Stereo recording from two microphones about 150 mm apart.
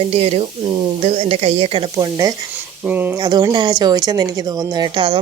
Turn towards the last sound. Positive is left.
turn(degrees=-35)  # may be behind; listen again after turning